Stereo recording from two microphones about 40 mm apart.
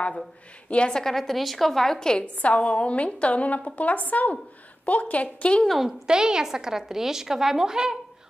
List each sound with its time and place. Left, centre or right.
0.7 s a woman's voice: left
0.9 s a woman's voice: centre
2.2 s a woman's voice: left
5.7 s a woman's voice: centre
6.0 s a woman's voice: centre